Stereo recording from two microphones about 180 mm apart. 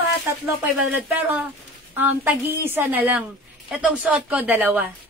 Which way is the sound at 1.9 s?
10° right (ahead or behind).